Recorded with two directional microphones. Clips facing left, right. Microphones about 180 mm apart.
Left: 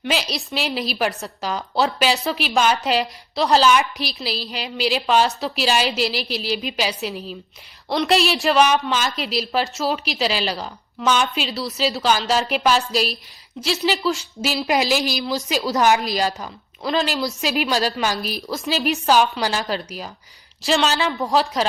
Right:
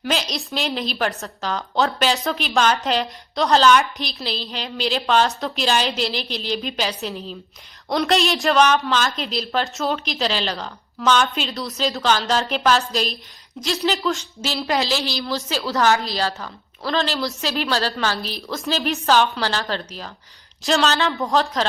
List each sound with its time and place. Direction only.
0.0 s a woman's voice: 5° left (ahead or behind)